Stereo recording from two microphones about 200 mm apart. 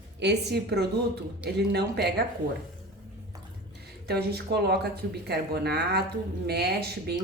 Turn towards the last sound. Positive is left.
turn(degrees=-55)  # may be behind; listen again after turning